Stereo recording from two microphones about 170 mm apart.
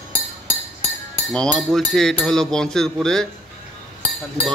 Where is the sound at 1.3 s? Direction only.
5° left (ahead or behind).